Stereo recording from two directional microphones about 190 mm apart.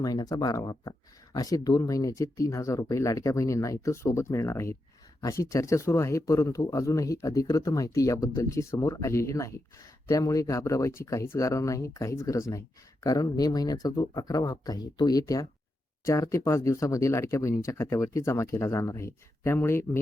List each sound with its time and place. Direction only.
0.0 s speech: 20° left (ahead or behind)